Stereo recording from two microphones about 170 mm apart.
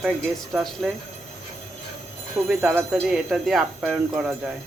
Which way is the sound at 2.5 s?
10° right (ahead or behind).